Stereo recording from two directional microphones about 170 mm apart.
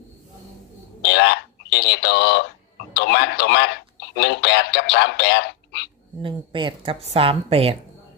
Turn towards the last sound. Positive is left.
turn(degrees=-35)  # may be behind; listen again after turning